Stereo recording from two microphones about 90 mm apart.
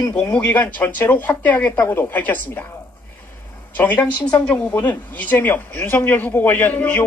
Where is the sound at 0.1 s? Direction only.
15° left (ahead or behind).